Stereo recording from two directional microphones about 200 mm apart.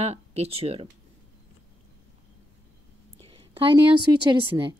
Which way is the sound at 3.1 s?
25° right (ahead or behind).